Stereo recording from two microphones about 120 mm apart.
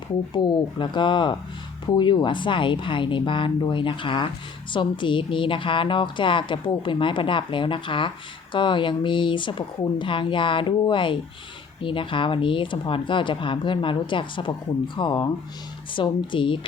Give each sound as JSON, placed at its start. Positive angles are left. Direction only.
{"t": 0.3, "sound": "a woman's voice", "side_deg": 40}